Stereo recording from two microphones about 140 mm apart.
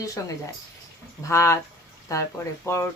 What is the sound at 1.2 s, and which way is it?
A woman's voice, 20° left (ahead or behind).